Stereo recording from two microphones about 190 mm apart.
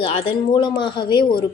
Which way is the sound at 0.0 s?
30° left (ahead or behind).